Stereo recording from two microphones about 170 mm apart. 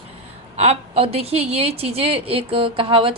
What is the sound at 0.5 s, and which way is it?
A woman's voice, 40° right (ahead or behind).